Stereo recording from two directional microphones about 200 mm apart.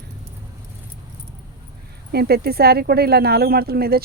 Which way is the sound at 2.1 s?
50° right (ahead or behind).